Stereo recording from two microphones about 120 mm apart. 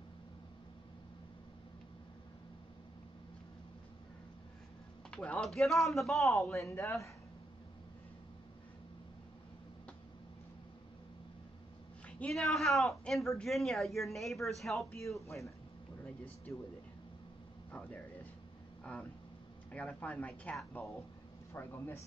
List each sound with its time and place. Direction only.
5.1 s speech: 10° left (ahead or behind)
6.5 s a woman's voice: 25° left (ahead or behind)
12.2 s speech: centre (ahead or behind)
16.5 s a woman's voice: 20° left (ahead or behind)
17.6 s speech: 10° left (ahead or behind)
19.7 s a woman's voice: 10° left (ahead or behind)